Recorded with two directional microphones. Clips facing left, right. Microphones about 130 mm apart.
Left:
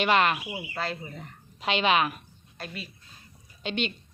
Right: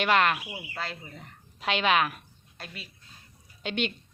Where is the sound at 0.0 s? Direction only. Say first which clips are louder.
Left 1 dB; centre (ahead or behind).